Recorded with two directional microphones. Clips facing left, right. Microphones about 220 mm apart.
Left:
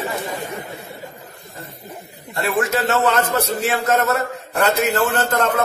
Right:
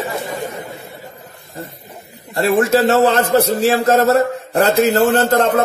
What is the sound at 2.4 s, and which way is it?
A man's voice, 30° right (ahead or behind).